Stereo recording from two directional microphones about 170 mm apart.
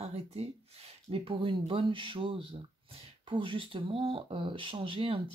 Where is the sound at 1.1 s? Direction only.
30° right (ahead or behind).